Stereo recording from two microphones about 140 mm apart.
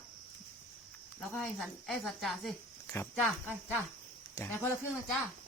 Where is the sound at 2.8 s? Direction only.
20° left (ahead or behind).